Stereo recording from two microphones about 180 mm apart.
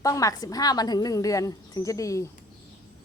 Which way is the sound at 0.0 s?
20° left (ahead or behind).